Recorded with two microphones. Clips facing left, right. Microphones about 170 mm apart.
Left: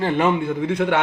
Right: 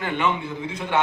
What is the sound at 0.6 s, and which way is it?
Speech, 65° left (ahead or behind).